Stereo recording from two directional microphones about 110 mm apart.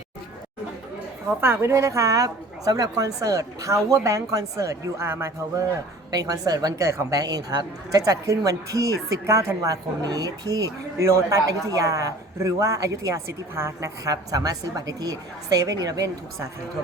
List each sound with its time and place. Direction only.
1.4 s a woman's voice: 20° right (ahead or behind)
6.1 s a woman's voice: 35° right (ahead or behind)